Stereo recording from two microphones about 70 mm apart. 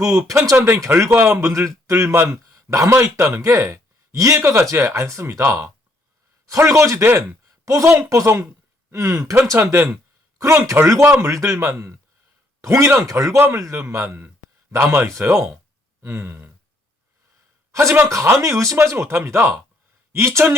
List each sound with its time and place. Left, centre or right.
0.0 s speech: right
0.5 s a man's voice: right
9.7 s a sound: right
10.7 s a man's voice: right
17.7 s a sound: right
17.9 s a man's voice: right